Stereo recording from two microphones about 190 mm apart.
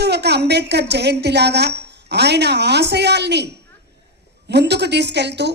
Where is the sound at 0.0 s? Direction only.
60° right (ahead or behind).